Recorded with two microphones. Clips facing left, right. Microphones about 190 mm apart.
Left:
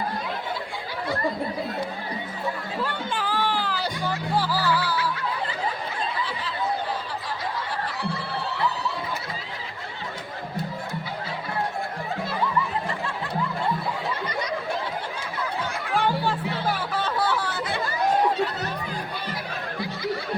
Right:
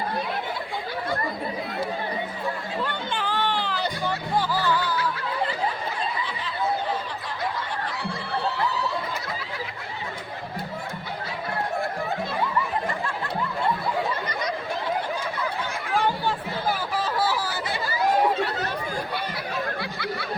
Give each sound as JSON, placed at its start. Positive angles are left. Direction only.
{"t": 2.8, "sound": "music", "side_deg": 5}
{"t": 15.9, "sound": "music", "side_deg": 0}
{"t": 19.8, "sound": "a sound", "side_deg": -70}